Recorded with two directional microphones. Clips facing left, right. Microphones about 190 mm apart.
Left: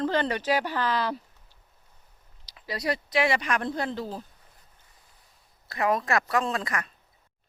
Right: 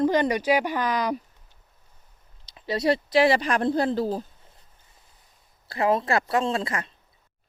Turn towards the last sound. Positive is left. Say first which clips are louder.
# right 3 dB
turn(degrees=-25)  # may be behind; listen again after turning